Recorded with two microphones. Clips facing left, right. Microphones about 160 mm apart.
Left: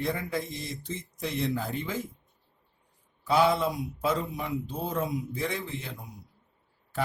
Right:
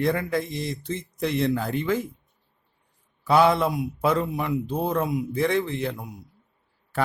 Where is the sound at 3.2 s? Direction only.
60° right (ahead or behind).